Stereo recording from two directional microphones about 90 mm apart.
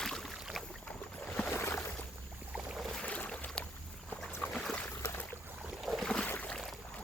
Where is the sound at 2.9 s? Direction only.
15° left (ahead or behind).